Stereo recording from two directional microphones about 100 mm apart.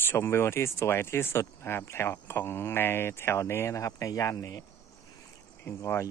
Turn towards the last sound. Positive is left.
turn(degrees=25)  # may be behind; listen again after turning